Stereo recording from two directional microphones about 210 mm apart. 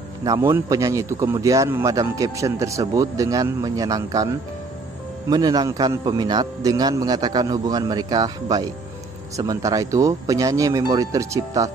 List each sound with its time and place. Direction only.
0.2 s a man's voice: 15° right (ahead or behind)
5.3 s a man's voice: 20° right (ahead or behind)